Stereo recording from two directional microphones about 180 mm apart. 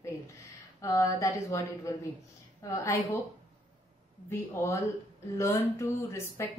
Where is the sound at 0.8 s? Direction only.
15° left (ahead or behind).